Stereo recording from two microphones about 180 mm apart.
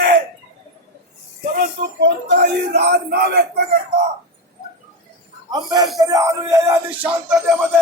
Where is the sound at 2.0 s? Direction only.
75° right (ahead or behind).